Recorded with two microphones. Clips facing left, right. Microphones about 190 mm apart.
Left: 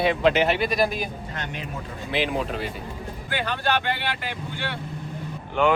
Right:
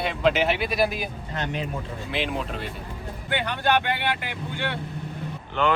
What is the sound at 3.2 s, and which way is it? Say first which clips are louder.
Speech: right 2 dB; 20° right (ahead or behind).